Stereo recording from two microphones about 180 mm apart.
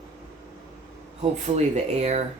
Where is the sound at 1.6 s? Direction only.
40° right (ahead or behind).